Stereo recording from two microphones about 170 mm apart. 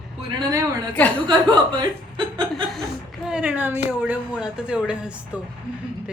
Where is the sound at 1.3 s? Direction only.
25° right (ahead or behind).